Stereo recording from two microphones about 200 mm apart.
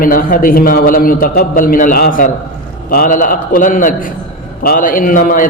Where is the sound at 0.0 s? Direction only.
45° left (ahead or behind).